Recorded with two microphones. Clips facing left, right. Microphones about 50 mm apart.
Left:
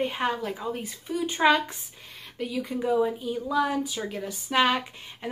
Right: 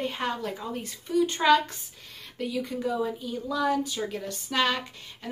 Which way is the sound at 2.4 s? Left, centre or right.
Centre.